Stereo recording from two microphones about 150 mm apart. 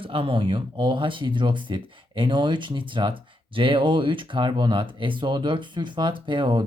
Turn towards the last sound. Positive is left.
turn(degrees=-30)  # may be behind; listen again after turning